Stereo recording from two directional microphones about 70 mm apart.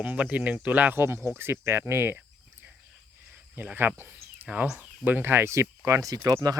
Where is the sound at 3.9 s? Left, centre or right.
Right.